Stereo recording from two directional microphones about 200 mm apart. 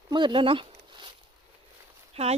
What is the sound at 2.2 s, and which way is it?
Speech, 30° right (ahead or behind).